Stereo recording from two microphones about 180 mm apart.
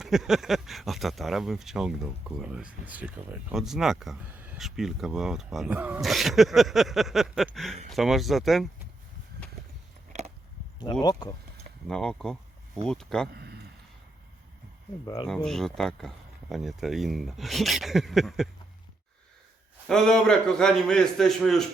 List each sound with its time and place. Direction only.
0.0 s speech: centre (ahead or behind)
10.1 s a sound: 40° right (ahead or behind)
11.0 s speech: 20° left (ahead or behind)
11.9 s speech: 5° left (ahead or behind)
15.0 s speech: 20° left (ahead or behind)
15.4 s speech: centre (ahead or behind)
19.9 s speech: 5° left (ahead or behind)